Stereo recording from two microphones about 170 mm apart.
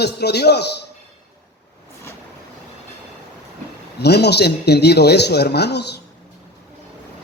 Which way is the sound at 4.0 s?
75° left (ahead or behind).